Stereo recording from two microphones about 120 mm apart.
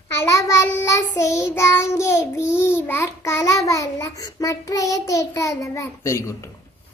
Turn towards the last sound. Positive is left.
turn(degrees=20)  # may be behind; listen again after turning